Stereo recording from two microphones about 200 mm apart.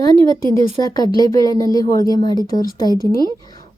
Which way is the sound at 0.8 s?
20° left (ahead or behind).